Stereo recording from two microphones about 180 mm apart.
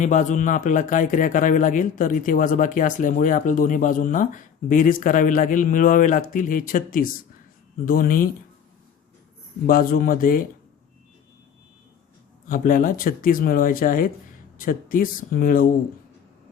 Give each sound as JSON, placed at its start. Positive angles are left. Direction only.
{"t": 0.0, "sound": "a man's voice", "side_deg": 40}
{"t": 9.6, "sound": "a man's voice", "side_deg": 55}
{"t": 12.5, "sound": "a man's voice", "side_deg": 50}